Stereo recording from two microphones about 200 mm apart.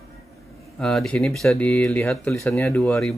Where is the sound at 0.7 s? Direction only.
Centre (ahead or behind).